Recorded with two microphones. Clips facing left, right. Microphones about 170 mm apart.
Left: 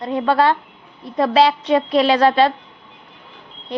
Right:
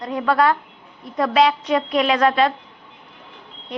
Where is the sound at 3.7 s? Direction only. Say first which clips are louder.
Left 4 dB; 35° left (ahead or behind).